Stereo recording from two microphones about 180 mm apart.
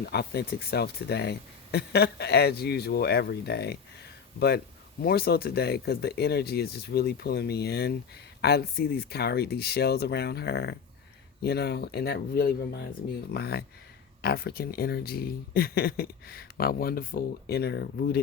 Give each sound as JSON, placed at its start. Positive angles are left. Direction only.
{"t": 0.0, "sound": "speech", "side_deg": 65}